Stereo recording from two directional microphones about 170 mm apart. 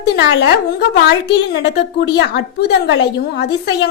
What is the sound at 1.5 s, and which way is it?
A woman's voice, 90° left.